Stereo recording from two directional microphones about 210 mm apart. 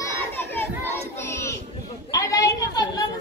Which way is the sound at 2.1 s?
15° left (ahead or behind).